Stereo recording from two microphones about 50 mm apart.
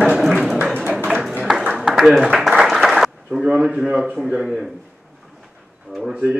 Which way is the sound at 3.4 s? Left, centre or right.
Centre.